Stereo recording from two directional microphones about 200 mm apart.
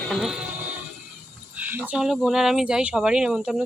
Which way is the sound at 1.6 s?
10° right (ahead or behind).